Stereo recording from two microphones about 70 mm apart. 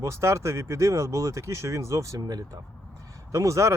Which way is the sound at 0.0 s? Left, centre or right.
Right.